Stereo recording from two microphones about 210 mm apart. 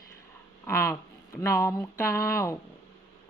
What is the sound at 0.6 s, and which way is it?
Speech, 10° left (ahead or behind).